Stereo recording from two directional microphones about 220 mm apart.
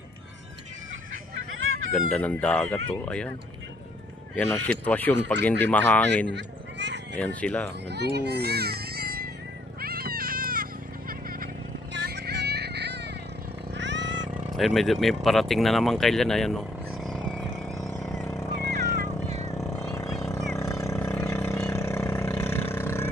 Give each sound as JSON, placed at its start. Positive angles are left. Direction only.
{"t": 1.9, "sound": "speech", "side_deg": 5}
{"t": 4.9, "sound": "speech", "side_deg": 10}
{"t": 6.2, "sound": "a sound", "side_deg": -55}
{"t": 7.2, "sound": "speech", "side_deg": 5}
{"t": 7.9, "sound": "speech", "side_deg": -50}
{"t": 9.8, "sound": "baby cry", "side_deg": -45}
{"t": 12.0, "sound": "a sound", "side_deg": -45}
{"t": 13.7, "sound": "music", "side_deg": -55}
{"t": 14.3, "sound": "speech", "side_deg": 0}
{"t": 18.0, "sound": "vehicle", "side_deg": 0}
{"t": 18.3, "sound": "vehicle", "side_deg": 15}